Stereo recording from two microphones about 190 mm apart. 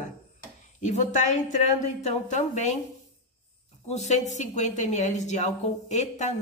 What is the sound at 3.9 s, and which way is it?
Speech, 35° left (ahead or behind).